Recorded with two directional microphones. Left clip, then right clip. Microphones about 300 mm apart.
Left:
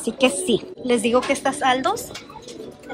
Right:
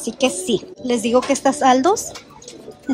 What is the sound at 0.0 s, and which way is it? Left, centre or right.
Speech, centre.